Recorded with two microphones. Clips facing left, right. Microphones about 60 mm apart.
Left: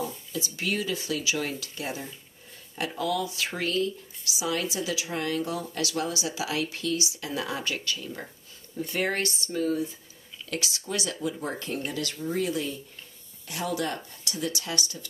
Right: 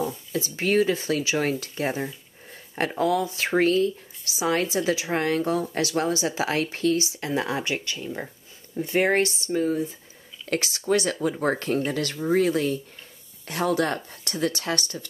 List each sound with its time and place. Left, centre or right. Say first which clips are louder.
0.3 s speech: right 8 dB; right
10.5 s speech: right 9 dB; right